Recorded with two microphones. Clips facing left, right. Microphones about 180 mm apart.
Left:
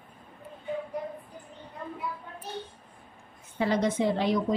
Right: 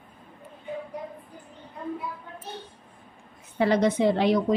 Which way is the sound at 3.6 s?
70° right (ahead or behind).